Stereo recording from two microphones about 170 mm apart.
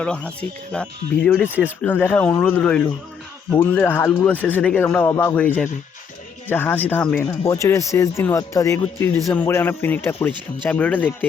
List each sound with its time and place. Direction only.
0.0 s a man's voice: 5° left (ahead or behind)
7.4 s a man's voice: 20° left (ahead or behind)